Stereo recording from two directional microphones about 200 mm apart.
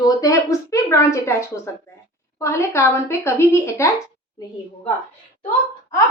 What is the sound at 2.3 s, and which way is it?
A woman's voice, 15° left (ahead or behind).